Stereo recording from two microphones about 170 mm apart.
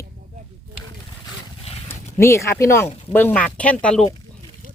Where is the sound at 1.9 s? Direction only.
15° left (ahead or behind).